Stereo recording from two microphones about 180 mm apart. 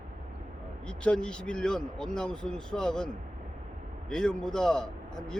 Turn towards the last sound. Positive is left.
turn(degrees=5)  # may be behind; listen again after turning